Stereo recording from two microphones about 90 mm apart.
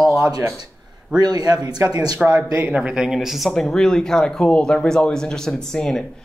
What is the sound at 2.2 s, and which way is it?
Speech, 35° right (ahead or behind).